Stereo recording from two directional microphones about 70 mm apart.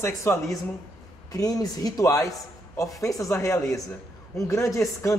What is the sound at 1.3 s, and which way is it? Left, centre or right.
A man's voice, left.